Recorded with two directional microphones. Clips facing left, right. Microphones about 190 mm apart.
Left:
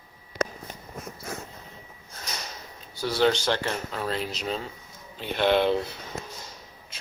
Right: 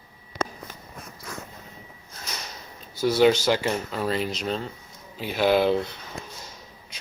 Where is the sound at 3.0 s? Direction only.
15° right (ahead or behind).